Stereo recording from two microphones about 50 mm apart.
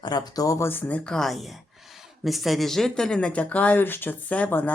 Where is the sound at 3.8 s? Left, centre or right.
Left.